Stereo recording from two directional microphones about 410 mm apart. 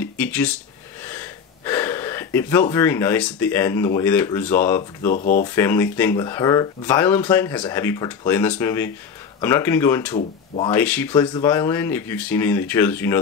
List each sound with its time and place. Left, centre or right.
0.0 s speech: centre
5.1 s speech: centre
5.5 s speech: centre